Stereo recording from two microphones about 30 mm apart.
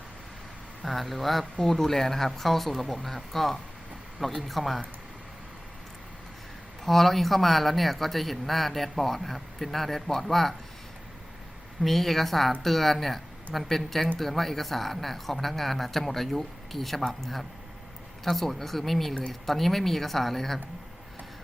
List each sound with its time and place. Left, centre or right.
0.9 s a woman's voice: centre
6.8 s a woman's voice: centre
11.8 s a woman's voice: centre